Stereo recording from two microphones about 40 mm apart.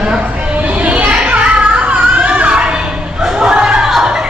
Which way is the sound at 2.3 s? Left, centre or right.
Right.